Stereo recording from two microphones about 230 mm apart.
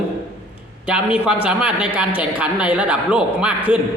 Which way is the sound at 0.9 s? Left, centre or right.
Centre.